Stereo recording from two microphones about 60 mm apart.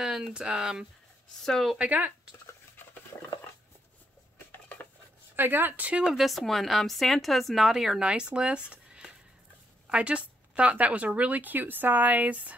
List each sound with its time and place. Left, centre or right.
0.0 s speech: centre
1.4 s a woman's voice: centre
1.8 s speech: right
2.8 s a sound: left
5.3 s speech: right
6.0 s a woman's voice: centre; by 12.5 s right